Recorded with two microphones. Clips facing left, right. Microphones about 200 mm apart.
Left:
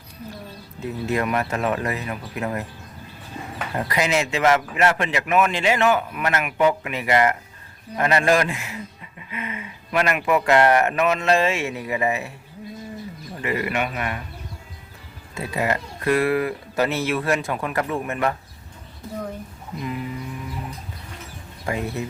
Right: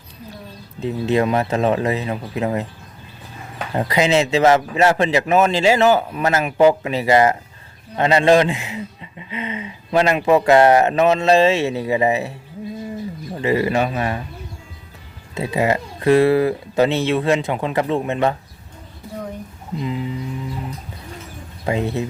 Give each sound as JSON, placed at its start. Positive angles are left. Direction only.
{"t": 0.8, "sound": "speech", "side_deg": -20}
{"t": 3.8, "sound": "speech", "side_deg": -25}
{"t": 13.4, "sound": "speech", "side_deg": -30}
{"t": 15.4, "sound": "speech", "side_deg": -25}
{"t": 19.8, "sound": "a sound", "side_deg": -25}
{"t": 21.7, "sound": "speech", "side_deg": -25}